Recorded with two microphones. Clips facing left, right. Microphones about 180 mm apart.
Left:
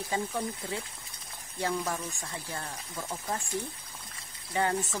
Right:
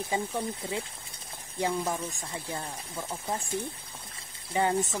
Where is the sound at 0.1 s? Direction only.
10° right (ahead or behind).